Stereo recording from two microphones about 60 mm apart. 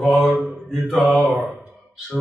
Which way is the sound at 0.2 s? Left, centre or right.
Centre.